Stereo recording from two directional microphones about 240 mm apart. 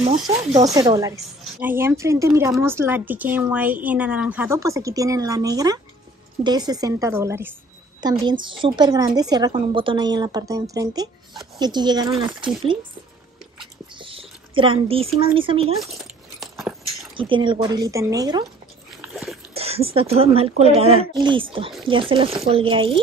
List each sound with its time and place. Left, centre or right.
0.3 s speech: centre
13.9 s a sound: right
15.1 s speech: right
15.8 s a sound: centre
17.2 s speech: right
18.9 s splash: centre
19.5 s speech: right